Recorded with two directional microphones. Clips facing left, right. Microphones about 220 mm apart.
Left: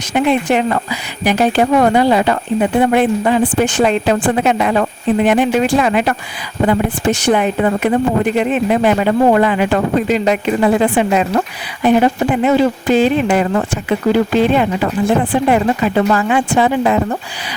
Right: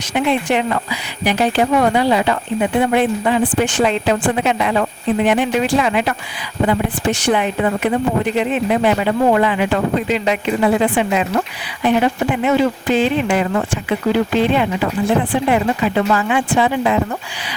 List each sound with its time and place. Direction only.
0.1 s speech: 45° left (ahead or behind)